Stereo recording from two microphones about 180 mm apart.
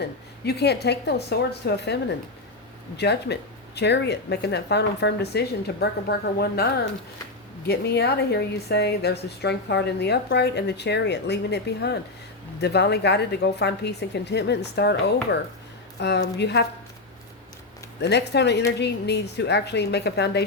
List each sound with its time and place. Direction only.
0.0 s a woman's voice: 65° left (ahead or behind)
7.7 s a woman's voice: 65° left (ahead or behind)
18.0 s a woman's voice: 70° left (ahead or behind)